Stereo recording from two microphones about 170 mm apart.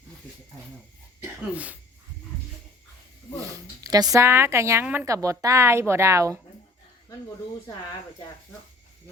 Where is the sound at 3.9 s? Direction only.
20° right (ahead or behind).